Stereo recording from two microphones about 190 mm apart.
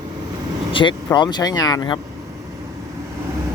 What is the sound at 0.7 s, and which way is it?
Speech, 25° left (ahead or behind).